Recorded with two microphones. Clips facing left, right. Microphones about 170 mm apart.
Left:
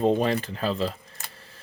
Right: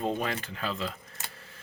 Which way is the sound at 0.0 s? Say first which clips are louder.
Left 8 dB; 30° left (ahead or behind).